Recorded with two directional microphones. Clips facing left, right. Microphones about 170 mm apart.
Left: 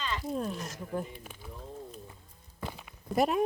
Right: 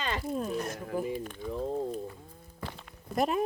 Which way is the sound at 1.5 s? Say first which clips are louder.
Right 13 dB; 80° right.